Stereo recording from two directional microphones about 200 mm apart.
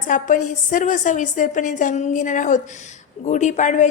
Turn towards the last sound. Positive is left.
turn(degrees=35)  # may be behind; listen again after turning